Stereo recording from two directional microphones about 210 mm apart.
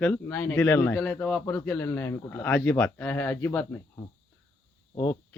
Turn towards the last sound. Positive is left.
turn(degrees=15)  # may be behind; listen again after turning